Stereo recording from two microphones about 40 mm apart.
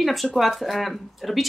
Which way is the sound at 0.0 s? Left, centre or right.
Centre.